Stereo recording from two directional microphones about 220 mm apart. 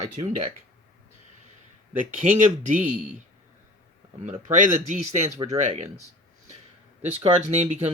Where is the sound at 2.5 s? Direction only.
35° right (ahead or behind).